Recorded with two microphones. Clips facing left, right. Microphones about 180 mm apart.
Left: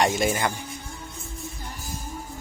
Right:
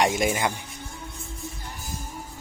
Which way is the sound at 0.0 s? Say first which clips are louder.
Even; 15° right (ahead or behind).